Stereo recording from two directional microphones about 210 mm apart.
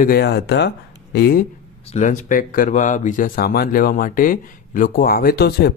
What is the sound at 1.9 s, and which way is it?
Speech, 35° left (ahead or behind).